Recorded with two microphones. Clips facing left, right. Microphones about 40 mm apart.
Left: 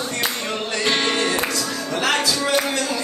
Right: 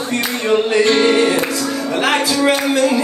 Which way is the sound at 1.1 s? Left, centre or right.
Centre.